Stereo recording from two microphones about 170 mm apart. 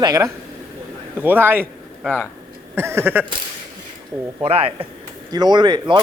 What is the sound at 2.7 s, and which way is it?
Speech, 15° right (ahead or behind).